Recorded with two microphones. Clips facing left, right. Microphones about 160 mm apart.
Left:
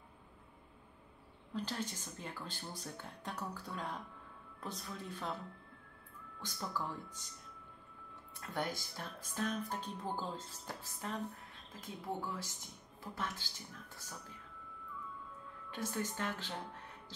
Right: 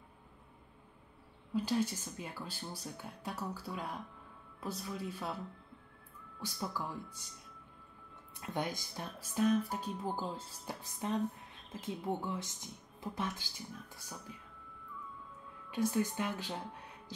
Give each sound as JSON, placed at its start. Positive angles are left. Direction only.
{"t": 1.5, "sound": "speech", "side_deg": -10}
{"t": 6.4, "sound": "speech", "side_deg": -10}
{"t": 8.4, "sound": "speech", "side_deg": -15}
{"t": 15.7, "sound": "speech", "side_deg": -15}